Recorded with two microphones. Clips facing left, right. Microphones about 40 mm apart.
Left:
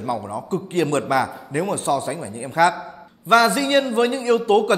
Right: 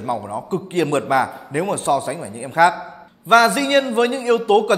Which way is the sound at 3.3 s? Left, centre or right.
Right.